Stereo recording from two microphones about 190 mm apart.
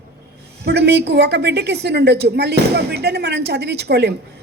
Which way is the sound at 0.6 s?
60° right (ahead or behind).